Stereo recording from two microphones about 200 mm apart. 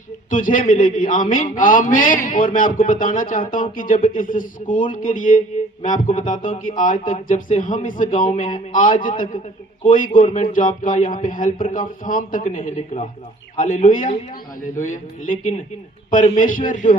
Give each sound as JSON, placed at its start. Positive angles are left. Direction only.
{"t": 0.3, "sound": "speech", "side_deg": 40}
{"t": 10.2, "sound": "a sound", "side_deg": 30}
{"t": 10.5, "sound": "speech", "side_deg": 40}